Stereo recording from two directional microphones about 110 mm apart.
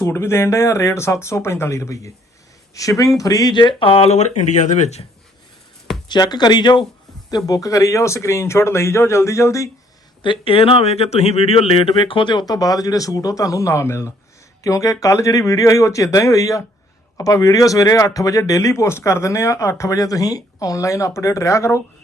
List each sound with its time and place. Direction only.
0.0 s speech: 25° left (ahead or behind); by 4.3 s 80° left
4.4 s speech: 90° left
6.1 s speech: 40° left (ahead or behind)
10.2 s speech: 55° left (ahead or behind); by 21.8 s 25° left (ahead or behind)